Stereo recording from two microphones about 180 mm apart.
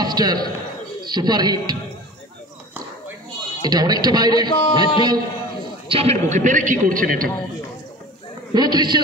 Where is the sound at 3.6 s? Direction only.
20° right (ahead or behind).